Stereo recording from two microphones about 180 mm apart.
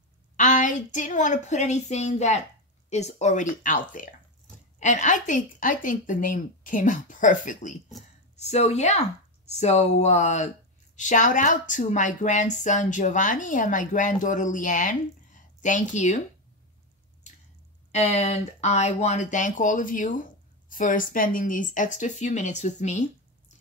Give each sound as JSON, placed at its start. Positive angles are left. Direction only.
{"t": 0.4, "sound": "a woman's voice", "side_deg": 45}
{"t": 17.9, "sound": "a woman's voice", "side_deg": 40}